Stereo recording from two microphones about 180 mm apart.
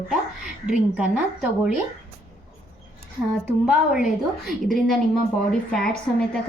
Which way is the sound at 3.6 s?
5° right (ahead or behind).